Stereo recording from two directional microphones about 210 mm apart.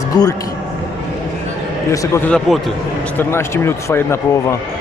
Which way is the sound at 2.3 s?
Centre (ahead or behind).